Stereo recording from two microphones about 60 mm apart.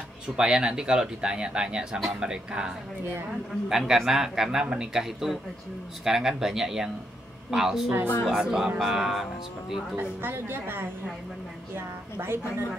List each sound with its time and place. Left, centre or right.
0.4 s speech: centre
9.9 s a woman's voice: right